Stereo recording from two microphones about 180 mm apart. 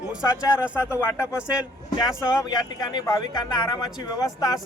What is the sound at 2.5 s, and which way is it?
Speech, 20° left (ahead or behind).